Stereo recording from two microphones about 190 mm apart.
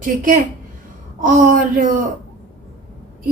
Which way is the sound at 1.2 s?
45° right (ahead or behind).